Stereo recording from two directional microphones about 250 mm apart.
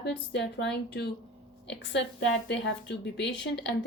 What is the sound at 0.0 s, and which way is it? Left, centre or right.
Speech, left.